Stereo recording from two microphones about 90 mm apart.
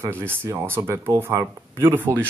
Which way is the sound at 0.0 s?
25° right (ahead or behind).